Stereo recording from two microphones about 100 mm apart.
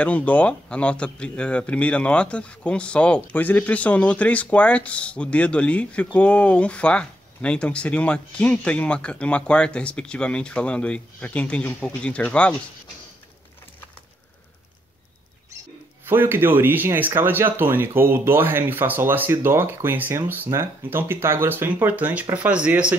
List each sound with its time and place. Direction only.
0.0 s speech: 15° left (ahead or behind)
16.1 s speech: 20° right (ahead or behind)